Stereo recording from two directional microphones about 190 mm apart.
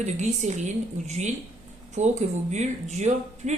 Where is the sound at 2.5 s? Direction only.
35° right (ahead or behind).